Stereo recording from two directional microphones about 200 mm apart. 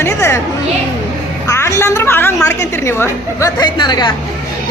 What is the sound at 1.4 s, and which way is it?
A woman's voice, 15° left (ahead or behind).